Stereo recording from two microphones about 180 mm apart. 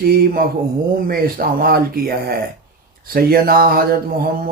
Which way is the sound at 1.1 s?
55° right (ahead or behind).